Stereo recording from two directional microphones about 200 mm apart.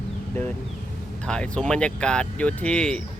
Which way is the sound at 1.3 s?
5° left (ahead or behind).